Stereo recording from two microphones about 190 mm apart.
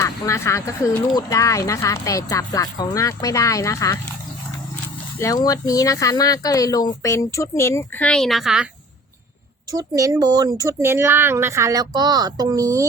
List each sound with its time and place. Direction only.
0.0 s speech: 15° left (ahead or behind)
5.2 s speech: 20° left (ahead or behind); by 8.6 s centre (ahead or behind)
9.7 s speech: 20° right (ahead or behind)